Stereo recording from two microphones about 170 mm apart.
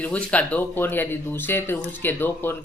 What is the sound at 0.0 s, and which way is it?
Speech, 10° left (ahead or behind).